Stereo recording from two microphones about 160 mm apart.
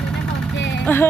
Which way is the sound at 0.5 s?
90° left.